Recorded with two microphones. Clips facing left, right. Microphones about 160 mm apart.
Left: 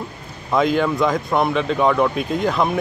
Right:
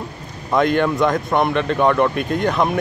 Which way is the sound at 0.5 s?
Centre (ahead or behind).